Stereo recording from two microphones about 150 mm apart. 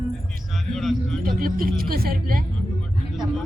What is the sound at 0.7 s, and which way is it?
Music, centre (ahead or behind).